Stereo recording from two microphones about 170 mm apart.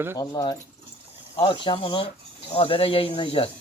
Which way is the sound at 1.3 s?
30° left (ahead or behind).